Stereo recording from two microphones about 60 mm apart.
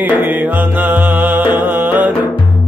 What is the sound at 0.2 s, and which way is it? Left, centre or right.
Music, right.